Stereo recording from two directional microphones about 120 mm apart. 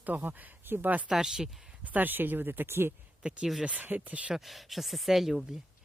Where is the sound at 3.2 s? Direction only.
5° right (ahead or behind).